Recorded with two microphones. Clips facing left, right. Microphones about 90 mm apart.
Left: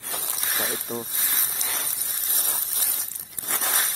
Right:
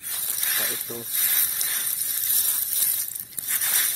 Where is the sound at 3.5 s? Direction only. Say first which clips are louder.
Left 6 dB; 70° left (ahead or behind).